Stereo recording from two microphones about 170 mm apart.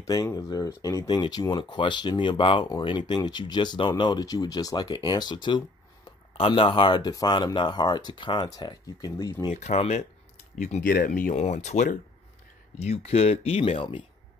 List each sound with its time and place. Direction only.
0.0 s speech: 20° left (ahead or behind)
9.5 s speech: 40° left (ahead or behind)
10.6 s speech: 50° left (ahead or behind); by 14.0 s 30° left (ahead or behind)